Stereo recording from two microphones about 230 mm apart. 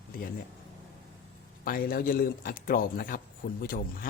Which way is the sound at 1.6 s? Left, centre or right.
Left.